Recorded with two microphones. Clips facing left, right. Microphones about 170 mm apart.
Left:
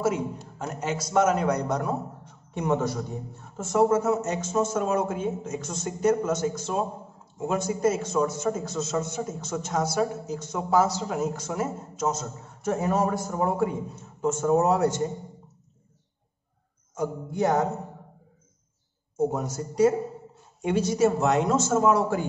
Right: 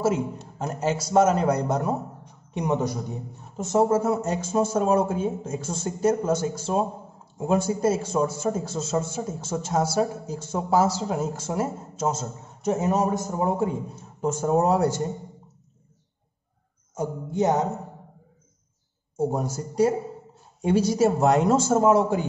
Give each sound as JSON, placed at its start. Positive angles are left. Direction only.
{"t": 0.0, "sound": "a man's voice", "side_deg": -30}
{"t": 2.2, "sound": "a man's voice", "side_deg": -15}
{"t": 3.9, "sound": "a man's voice", "side_deg": -30}
{"t": 14.2, "sound": "a man's voice", "side_deg": -35}
{"t": 17.4, "sound": "a man's voice", "side_deg": -20}
{"t": 19.1, "sound": "a man's voice", "side_deg": -30}